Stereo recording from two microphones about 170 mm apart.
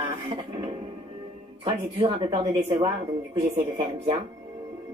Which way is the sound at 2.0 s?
30° right (ahead or behind).